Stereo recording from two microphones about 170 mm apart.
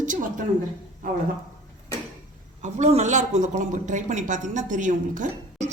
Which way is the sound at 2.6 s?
45° right (ahead or behind).